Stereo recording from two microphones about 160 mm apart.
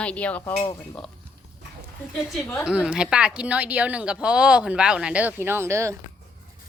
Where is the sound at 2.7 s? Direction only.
5° right (ahead or behind).